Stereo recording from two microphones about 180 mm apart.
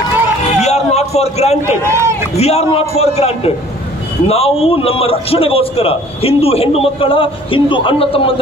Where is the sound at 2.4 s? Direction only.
35° left (ahead or behind).